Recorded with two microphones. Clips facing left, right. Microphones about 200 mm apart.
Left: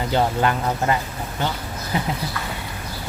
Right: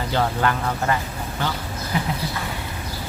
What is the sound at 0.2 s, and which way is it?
Speech, 20° left (ahead or behind).